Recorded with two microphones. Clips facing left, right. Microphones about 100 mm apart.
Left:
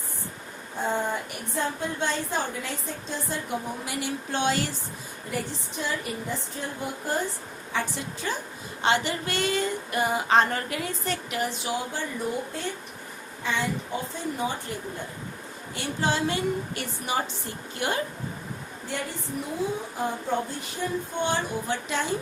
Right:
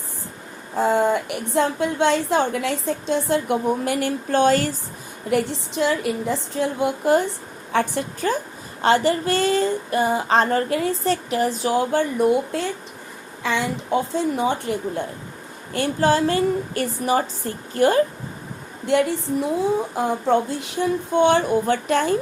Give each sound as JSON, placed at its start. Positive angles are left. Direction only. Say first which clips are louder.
{"t": 0.8, "sound": "a woman's voice", "louder": "right 9 dB", "side_deg": -90}
{"t": 5.3, "sound": "a woman's voice", "louder": "right 11 dB", "side_deg": -90}
{"t": 7.7, "sound": "a woman's voice", "louder": "right 9 dB", "side_deg": -55}
{"t": 8.8, "sound": "a sound", "louder": "right 7 dB", "side_deg": -40}
{"t": 11.8, "sound": "a woman's voice", "louder": "right 12 dB", "side_deg": -60}
{"t": 15.7, "sound": "a woman's voice", "louder": "right 9 dB", "side_deg": -50}
{"t": 17.7, "sound": "a sound", "louder": "right 12 dB", "side_deg": -40}
{"t": 18.9, "sound": "a woman's voice", "louder": "right 14 dB", "side_deg": -80}
{"t": 20.2, "sound": "a woman's voice", "louder": "right 9 dB", "side_deg": -80}